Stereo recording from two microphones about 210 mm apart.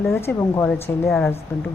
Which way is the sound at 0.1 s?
10° left (ahead or behind).